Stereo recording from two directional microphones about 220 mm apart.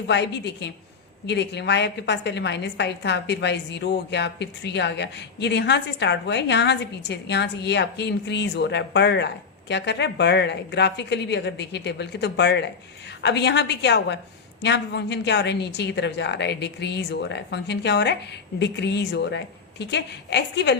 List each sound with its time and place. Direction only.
0.1 s a woman's voice: 50° left (ahead or behind)